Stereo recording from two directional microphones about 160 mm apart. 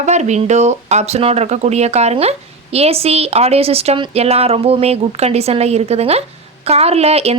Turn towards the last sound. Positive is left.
turn(degrees=-40)  # may be behind; listen again after turning